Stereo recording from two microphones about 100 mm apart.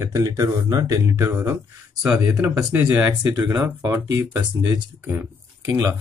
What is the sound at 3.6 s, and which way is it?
Speech, 30° right (ahead or behind).